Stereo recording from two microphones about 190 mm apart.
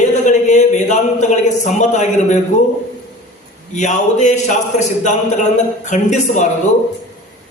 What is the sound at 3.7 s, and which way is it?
Speech, 40° left (ahead or behind).